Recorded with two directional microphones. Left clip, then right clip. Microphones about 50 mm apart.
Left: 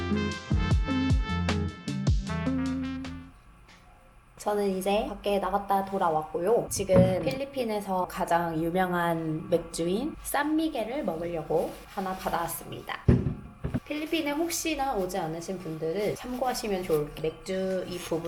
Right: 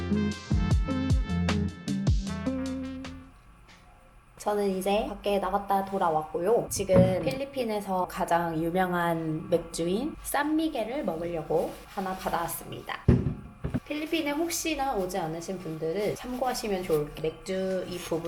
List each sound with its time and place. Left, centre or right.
0.0 s music: centre
4.5 s speech: left
5.9 s speech: centre
6.3 s speech: centre
6.7 s a woman's voice: left
8.7 s a woman's voice: centre
9.5 s a woman's voice: left
10.8 s a woman's voice: centre
11.4 s speech: left
13.2 s a sound: centre
13.8 s speech: left